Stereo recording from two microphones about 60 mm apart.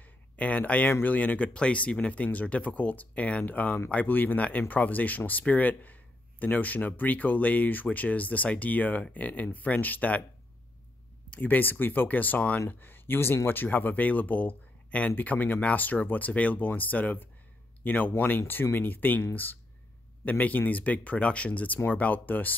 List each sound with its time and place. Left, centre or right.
0.0 s a sound: left
1.0 s speech: left
11.2 s speech: left